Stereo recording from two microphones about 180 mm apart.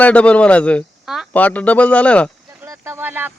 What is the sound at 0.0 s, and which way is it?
Speech, 10° left (ahead or behind).